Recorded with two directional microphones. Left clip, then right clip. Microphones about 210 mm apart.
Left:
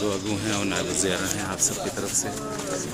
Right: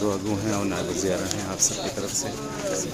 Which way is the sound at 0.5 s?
5° right (ahead or behind).